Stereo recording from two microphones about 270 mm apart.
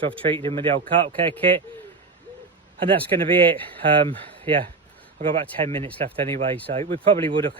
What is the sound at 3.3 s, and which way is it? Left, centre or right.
Speech, centre.